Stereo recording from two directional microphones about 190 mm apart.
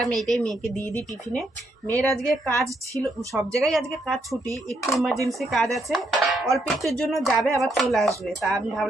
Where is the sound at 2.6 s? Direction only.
15° right (ahead or behind).